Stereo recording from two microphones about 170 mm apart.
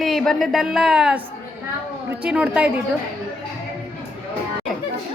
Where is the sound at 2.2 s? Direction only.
5° right (ahead or behind).